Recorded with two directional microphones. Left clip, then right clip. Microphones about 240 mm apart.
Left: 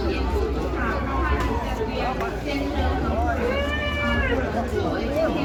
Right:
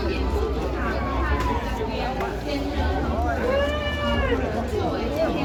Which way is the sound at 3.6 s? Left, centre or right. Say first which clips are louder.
Even; centre.